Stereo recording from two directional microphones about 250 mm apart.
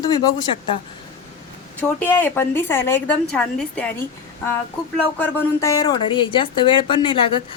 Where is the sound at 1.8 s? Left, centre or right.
Centre.